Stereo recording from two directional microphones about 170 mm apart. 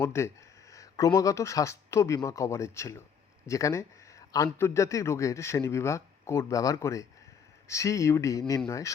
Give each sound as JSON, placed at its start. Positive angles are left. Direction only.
{"t": 0.0, "sound": "speech", "side_deg": 15}